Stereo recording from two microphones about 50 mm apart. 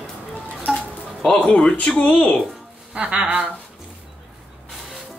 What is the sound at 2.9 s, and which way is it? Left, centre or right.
Speech, right.